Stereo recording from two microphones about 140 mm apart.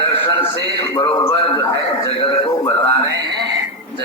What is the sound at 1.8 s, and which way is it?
Speech, 40° left (ahead or behind).